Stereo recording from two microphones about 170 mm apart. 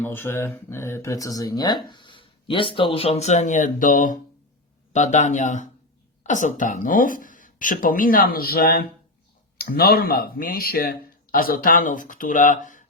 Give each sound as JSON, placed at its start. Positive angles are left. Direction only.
{"t": 0.0, "sound": "speech", "side_deg": 15}